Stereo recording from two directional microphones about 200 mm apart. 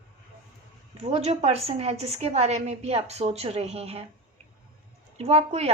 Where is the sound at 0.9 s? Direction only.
30° right (ahead or behind).